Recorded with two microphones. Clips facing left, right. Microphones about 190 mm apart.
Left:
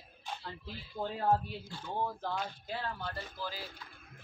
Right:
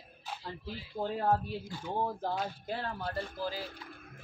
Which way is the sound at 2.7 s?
50° right (ahead or behind).